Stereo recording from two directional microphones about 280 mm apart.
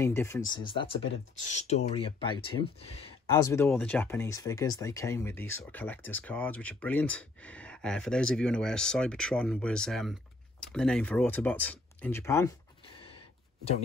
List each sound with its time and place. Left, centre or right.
0.0 s speech: centre